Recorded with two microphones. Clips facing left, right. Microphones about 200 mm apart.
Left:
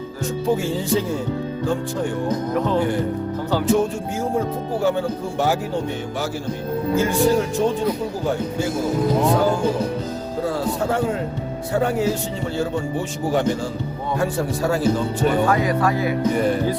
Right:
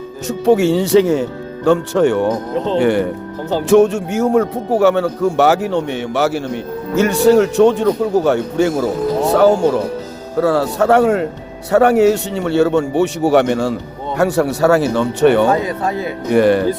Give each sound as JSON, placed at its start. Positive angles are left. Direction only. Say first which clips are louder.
{"t": 0.3, "sound": "speech", "louder": "right 9 dB", "side_deg": -75}
{"t": 10.4, "sound": "speech", "louder": "right 9 dB", "side_deg": -75}
{"t": 15.4, "sound": "speech", "louder": "right 2 dB", "side_deg": -25}
{"t": 16.3, "sound": "speech", "louder": "right 8 dB", "side_deg": -75}